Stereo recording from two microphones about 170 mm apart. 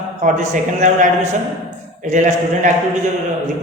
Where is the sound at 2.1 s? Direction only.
45° right (ahead or behind).